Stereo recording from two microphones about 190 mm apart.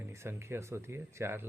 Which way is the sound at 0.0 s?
15° right (ahead or behind).